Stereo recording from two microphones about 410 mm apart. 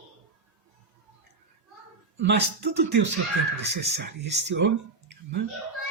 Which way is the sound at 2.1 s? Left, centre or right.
Right.